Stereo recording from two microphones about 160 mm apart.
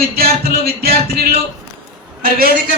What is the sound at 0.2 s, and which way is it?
A woman's voice, 75° right (ahead or behind).